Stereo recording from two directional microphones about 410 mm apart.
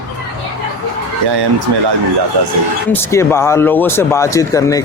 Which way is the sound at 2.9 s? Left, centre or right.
Centre.